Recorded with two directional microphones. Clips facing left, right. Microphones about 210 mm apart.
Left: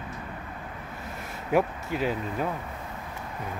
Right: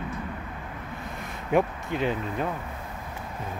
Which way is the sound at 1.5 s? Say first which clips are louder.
Right 1 dB; 5° left (ahead or behind).